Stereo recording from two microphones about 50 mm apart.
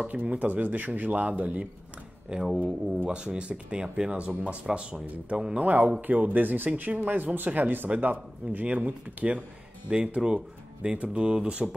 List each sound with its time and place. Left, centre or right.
0.1 s chopping: right
2.2 s speech: centre
4.1 s speech: right
4.6 s speech: centre
5.6 s chopping: right
8.5 s speech: right